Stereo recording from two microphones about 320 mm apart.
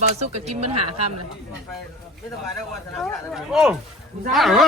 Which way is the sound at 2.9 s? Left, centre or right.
Centre.